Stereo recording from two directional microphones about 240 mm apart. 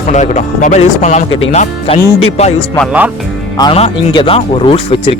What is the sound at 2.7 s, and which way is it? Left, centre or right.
Speech, centre.